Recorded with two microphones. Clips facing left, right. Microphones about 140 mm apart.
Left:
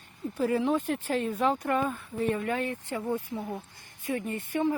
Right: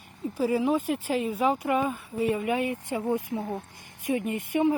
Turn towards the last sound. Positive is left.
turn(degrees=-15)  # may be behind; listen again after turning